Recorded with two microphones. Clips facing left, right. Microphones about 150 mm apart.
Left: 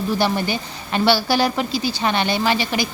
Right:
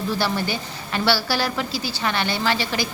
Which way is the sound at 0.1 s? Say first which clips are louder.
Left 4 dB; 20° left (ahead or behind).